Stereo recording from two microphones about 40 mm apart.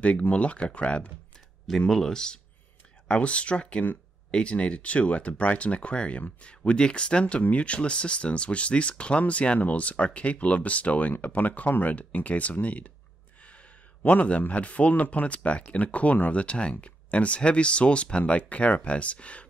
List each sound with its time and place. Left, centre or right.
0.0 s speech: left
1.8 s speech: centre
3.1 s speech: left
13.4 s a sound: left
14.0 s speech: left